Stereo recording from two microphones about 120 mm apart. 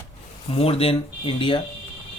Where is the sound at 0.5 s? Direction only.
55° left (ahead or behind).